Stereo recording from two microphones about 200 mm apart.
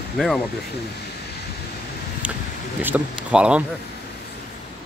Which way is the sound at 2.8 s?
10° right (ahead or behind).